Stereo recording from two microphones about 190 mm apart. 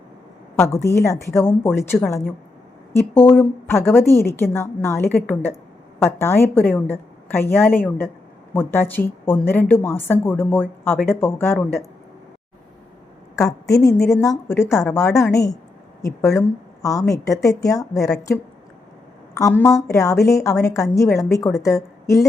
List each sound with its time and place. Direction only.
0.6 s speech: 15° left (ahead or behind)
13.3 s speech: 15° left (ahead or behind)